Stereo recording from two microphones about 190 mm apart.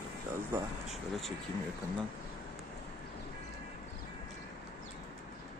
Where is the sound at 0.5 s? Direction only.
10° right (ahead or behind).